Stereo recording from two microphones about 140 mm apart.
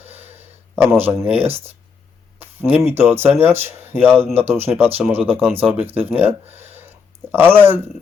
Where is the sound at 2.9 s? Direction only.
15° right (ahead or behind).